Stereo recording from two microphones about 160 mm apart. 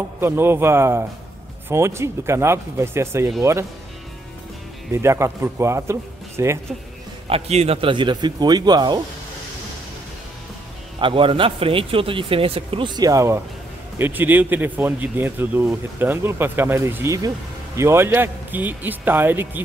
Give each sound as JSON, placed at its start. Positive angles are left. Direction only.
{"t": 0.2, "sound": "a man's voice", "side_deg": -15}
{"t": 4.9, "sound": "a man's voice", "side_deg": -15}
{"t": 7.2, "sound": "a man's voice", "side_deg": -40}
{"t": 11.0, "sound": "a man's voice", "side_deg": -35}